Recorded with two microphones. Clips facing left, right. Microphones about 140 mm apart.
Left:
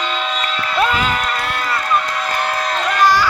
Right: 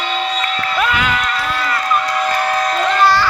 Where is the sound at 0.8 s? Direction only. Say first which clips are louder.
Left 2 dB; 35° left (ahead or behind).